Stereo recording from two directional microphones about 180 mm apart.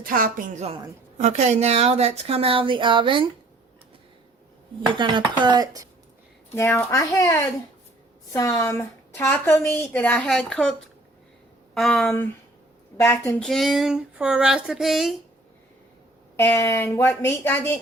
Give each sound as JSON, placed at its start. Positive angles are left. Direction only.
{"t": 0.0, "sound": "a woman's voice", "side_deg": -50}
{"t": 1.2, "sound": "speech", "side_deg": -40}
{"t": 4.9, "sound": "speech", "side_deg": -25}
{"t": 6.5, "sound": "a woman's voice", "side_deg": 15}
{"t": 13.0, "sound": "a woman's voice", "side_deg": 15}
{"t": 13.4, "sound": "speech", "side_deg": 0}
{"t": 16.4, "sound": "a woman's voice", "side_deg": 15}